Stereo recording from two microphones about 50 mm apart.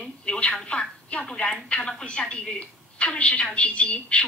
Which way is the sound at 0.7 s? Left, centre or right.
Left.